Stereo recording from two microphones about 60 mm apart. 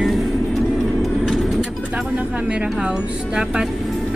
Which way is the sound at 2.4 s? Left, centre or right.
Centre.